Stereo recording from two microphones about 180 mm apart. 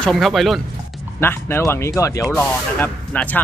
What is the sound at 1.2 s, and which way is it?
Speech, 15° left (ahead or behind).